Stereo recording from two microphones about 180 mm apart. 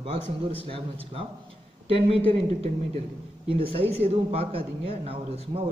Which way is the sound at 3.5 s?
30° right (ahead or behind).